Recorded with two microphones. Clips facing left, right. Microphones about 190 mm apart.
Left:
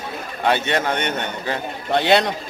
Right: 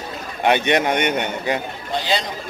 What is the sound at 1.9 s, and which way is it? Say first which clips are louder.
Speech: left 7 dB; 65° left (ahead or behind).